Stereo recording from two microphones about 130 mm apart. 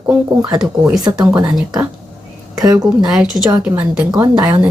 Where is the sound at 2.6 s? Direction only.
30° right (ahead or behind).